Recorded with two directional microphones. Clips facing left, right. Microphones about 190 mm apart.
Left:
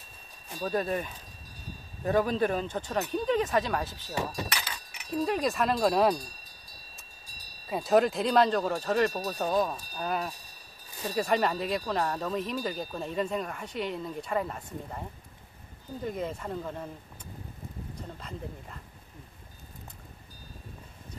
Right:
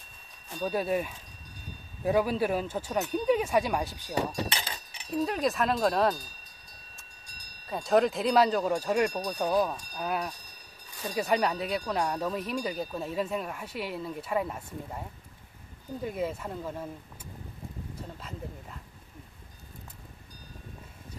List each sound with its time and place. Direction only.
0.6 s speech: 5° right (ahead or behind)
4.5 s keys jangling: 25° right (ahead or behind)
5.1 s speech: centre (ahead or behind)
9.1 s speech: 5° left (ahead or behind)
16.0 s speech: 5° right (ahead or behind)